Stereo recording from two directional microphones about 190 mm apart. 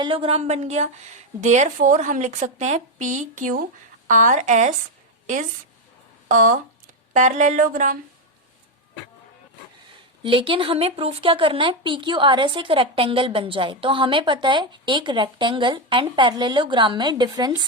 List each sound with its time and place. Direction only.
0.0 s a woman's voice: 25° right (ahead or behind); by 7.9 s 40° right (ahead or behind)
10.2 s speech: 30° right (ahead or behind)